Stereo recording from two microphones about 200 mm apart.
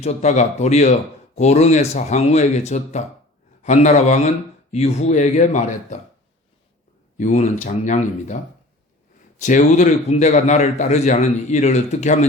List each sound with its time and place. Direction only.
0.0 s a man's voice: 35° left (ahead or behind)
7.2 s a man's voice: 35° left (ahead or behind)
9.4 s a man's voice: 40° left (ahead or behind)